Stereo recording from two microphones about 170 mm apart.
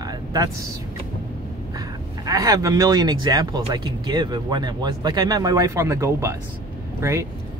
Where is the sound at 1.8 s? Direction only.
20° right (ahead or behind).